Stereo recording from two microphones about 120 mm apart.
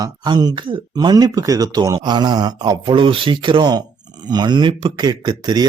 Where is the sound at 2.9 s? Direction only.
45° right (ahead or behind).